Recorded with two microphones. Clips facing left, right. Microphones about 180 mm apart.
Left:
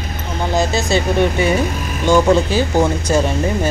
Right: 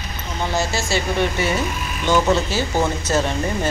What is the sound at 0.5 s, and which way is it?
Speech, 20° left (ahead or behind).